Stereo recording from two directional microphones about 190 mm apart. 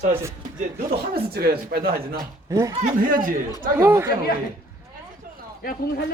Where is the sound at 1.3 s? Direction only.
55° right (ahead or behind).